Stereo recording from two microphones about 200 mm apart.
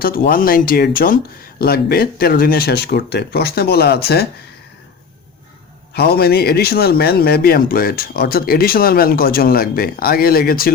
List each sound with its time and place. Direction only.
0.0 s a man's voice: 45° left (ahead or behind)
5.9 s a man's voice: 55° left (ahead or behind)